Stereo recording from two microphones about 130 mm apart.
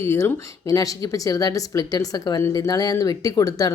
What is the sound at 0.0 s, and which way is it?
Speech, 20° left (ahead or behind).